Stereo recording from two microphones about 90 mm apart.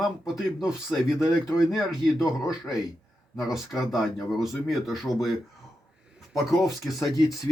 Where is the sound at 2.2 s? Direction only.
40° left (ahead or behind).